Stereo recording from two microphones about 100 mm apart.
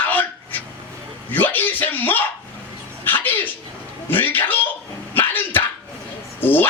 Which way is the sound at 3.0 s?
20° left (ahead or behind).